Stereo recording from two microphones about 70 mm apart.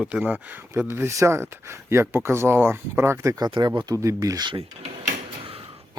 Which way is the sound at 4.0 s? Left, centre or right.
Right.